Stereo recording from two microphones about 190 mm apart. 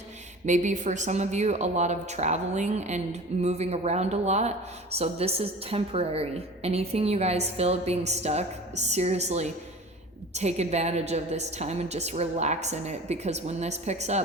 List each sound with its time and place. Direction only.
0.4 s speech: 40° right (ahead or behind)